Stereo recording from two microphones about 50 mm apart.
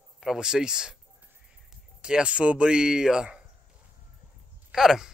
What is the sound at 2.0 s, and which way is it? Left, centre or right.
Speech, centre.